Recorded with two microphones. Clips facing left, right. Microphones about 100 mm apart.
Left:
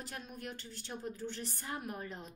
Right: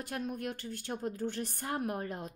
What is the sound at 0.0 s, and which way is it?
A woman's voice, 50° right (ahead or behind).